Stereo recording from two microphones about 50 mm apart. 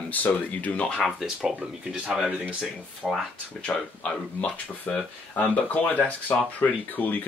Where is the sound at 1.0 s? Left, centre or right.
Centre.